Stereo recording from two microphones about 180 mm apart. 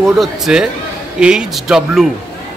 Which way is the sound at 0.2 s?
5° right (ahead or behind).